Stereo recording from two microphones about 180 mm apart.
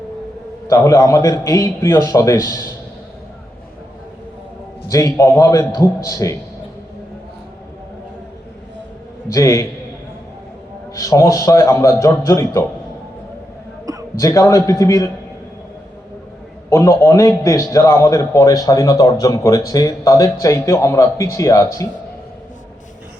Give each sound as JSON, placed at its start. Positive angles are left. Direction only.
{"t": 0.7, "sound": "a man's voice", "side_deg": 15}
{"t": 4.9, "sound": "a man's voice", "side_deg": 15}
{"t": 9.3, "sound": "a man's voice", "side_deg": 15}
{"t": 10.9, "sound": "a man's voice", "side_deg": 20}
{"t": 14.2, "sound": "a man's voice", "side_deg": 15}
{"t": 16.6, "sound": "a man's voice", "side_deg": 15}